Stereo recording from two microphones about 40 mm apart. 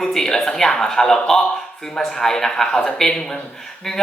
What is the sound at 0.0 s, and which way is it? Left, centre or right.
Speech, centre.